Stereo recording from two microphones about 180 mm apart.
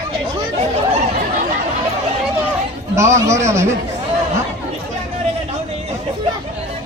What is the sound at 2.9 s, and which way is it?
Speech, 15° right (ahead or behind).